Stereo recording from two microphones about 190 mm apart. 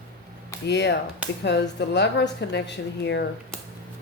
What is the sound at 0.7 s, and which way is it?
Speech, 65° left (ahead or behind).